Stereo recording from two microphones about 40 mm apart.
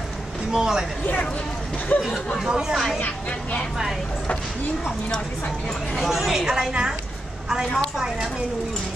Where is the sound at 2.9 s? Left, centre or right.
Left.